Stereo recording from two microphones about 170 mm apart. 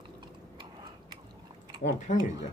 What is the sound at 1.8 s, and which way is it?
Typing, 45° left (ahead or behind).